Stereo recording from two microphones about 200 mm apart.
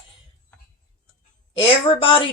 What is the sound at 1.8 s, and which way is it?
Speech, 25° left (ahead or behind).